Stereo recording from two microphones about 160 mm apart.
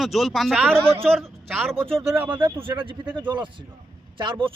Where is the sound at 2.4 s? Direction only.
30° right (ahead or behind).